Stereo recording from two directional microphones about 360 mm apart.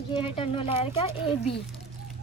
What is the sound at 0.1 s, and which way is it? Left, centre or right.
Speech, centre.